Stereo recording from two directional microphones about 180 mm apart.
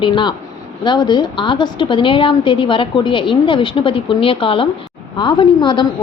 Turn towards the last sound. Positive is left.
turn(degrees=25)  # may be behind; listen again after turning